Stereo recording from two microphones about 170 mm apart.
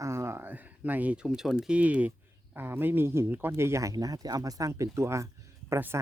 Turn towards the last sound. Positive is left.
turn(degrees=-15)  # may be behind; listen again after turning